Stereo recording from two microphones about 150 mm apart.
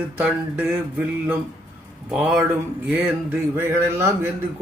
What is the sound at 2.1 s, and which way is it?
Speech, 5° right (ahead or behind).